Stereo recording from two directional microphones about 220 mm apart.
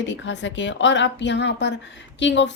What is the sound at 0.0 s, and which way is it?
A woman's voice, 55° left (ahead or behind).